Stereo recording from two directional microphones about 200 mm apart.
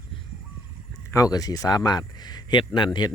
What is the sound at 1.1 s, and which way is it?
Speech, 15° left (ahead or behind).